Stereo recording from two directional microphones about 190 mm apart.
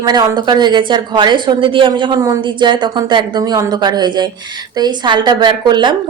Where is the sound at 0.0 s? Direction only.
20° right (ahead or behind).